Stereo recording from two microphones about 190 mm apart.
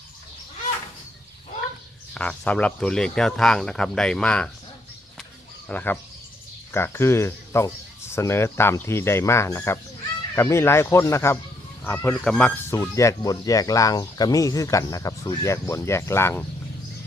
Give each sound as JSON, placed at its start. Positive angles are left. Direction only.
{"t": 2.1, "sound": "speech", "side_deg": 5}
{"t": 5.6, "sound": "speech", "side_deg": 10}
{"t": 12.7, "sound": "speech", "side_deg": 15}